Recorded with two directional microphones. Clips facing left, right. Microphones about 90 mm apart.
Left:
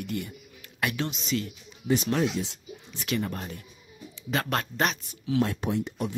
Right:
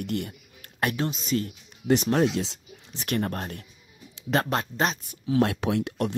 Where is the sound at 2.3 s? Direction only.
90° right.